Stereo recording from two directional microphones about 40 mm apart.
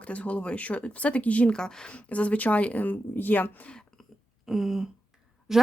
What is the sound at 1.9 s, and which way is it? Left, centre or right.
Speech, left.